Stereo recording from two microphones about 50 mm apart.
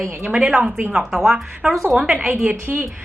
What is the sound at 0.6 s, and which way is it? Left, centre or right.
Speech, right.